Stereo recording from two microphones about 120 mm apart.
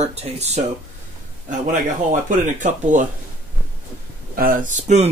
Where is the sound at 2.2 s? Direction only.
90° right.